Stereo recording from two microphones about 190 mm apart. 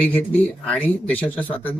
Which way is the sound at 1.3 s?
10° left (ahead or behind).